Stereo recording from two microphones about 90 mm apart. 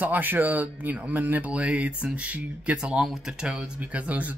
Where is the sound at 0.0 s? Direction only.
20° right (ahead or behind).